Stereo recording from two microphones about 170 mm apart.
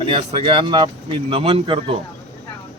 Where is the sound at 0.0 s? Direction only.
35° right (ahead or behind).